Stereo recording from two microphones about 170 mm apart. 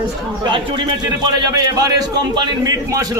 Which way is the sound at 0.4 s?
25° right (ahead or behind).